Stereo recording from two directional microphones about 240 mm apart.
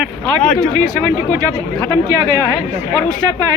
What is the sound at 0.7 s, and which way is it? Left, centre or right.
Speech, centre.